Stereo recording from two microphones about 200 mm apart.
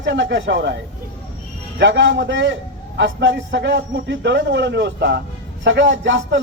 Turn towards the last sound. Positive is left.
turn(degrees=-65)  # may be behind; listen again after turning